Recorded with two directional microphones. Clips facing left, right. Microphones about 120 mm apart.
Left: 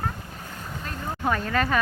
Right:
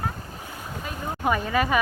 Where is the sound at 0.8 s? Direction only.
10° right (ahead or behind).